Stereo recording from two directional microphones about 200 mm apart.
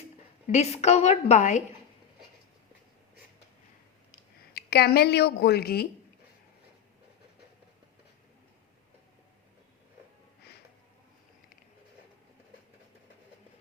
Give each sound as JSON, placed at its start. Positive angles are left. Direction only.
{"t": 0.4, "sound": "a woman's voice", "side_deg": 35}
{"t": 4.5, "sound": "a woman's voice", "side_deg": 55}